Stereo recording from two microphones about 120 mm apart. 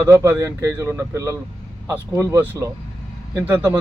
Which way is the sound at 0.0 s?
20° right (ahead or behind).